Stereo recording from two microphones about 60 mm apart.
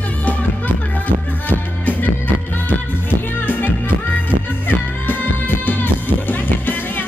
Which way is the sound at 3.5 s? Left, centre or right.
Left.